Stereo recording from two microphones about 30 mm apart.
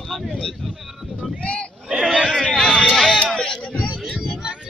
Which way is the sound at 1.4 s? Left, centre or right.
Left.